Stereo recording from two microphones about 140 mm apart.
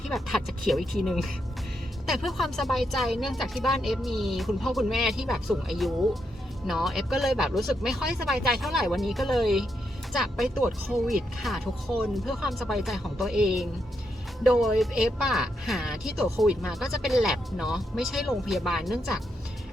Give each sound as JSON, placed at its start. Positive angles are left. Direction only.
{"t": 0.1, "sound": "speech", "side_deg": 0}